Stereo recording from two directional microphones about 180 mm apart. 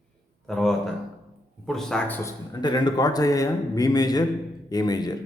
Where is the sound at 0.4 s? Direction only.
Centre (ahead or behind).